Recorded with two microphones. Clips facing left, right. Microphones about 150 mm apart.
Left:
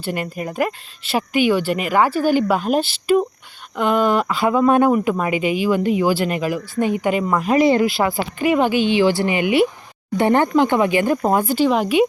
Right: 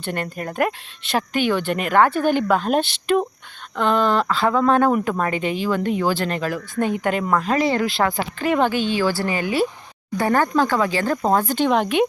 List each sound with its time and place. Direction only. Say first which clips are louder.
0.0 s speech: left 2 dB; 5° left (ahead or behind)